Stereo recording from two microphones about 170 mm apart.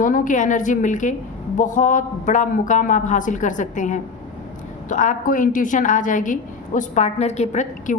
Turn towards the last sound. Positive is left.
turn(degrees=45)  # may be behind; listen again after turning